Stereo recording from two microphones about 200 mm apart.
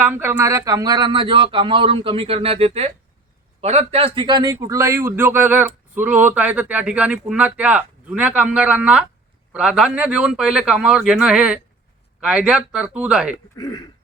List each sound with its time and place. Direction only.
0.0 s a man's voice: 10° right (ahead or behind)
13.6 s throat clearing: 20° left (ahead or behind)